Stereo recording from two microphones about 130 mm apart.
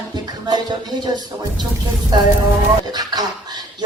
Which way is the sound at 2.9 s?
30° right (ahead or behind).